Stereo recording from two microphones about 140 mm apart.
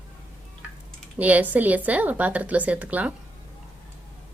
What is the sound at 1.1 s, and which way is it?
Speech, 10° right (ahead or behind).